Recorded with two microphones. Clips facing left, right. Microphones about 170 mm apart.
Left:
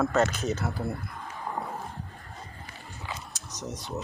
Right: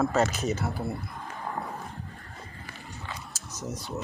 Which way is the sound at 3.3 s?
5° right (ahead or behind).